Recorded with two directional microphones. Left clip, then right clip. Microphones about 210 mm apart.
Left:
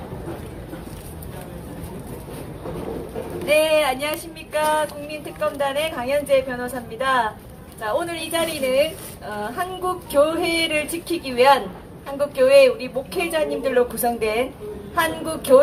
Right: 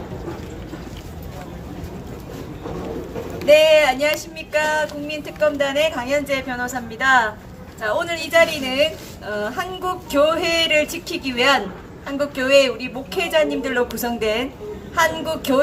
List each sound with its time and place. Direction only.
3.5 s speech: 25° right (ahead or behind)
5.4 s a woman's voice: 20° right (ahead or behind)